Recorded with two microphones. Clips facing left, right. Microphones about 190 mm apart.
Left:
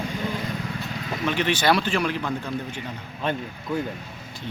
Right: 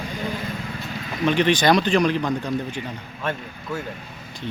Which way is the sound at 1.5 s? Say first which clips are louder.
Right 2 dB; 15° right (ahead or behind).